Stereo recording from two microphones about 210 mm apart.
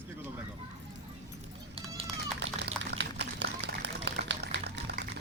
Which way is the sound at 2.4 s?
55° right (ahead or behind).